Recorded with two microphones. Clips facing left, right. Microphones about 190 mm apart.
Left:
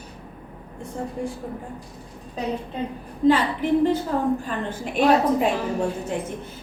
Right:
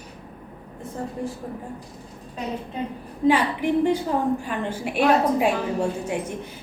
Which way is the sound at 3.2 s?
15° right (ahead or behind).